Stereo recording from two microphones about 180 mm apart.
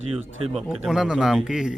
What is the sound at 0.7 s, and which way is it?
Speech, centre (ahead or behind).